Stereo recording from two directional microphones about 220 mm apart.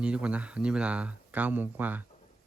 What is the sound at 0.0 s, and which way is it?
Speech, 5° right (ahead or behind).